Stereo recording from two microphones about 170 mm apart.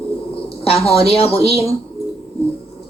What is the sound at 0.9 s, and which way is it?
Speech, 35° left (ahead or behind).